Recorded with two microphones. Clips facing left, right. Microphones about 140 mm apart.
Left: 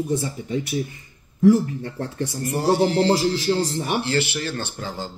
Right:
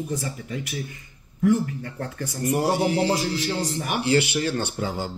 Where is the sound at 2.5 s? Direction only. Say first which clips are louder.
Left 2 dB; 15° right (ahead or behind).